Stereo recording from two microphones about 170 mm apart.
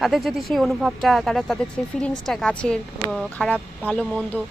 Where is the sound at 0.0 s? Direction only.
Centre (ahead or behind).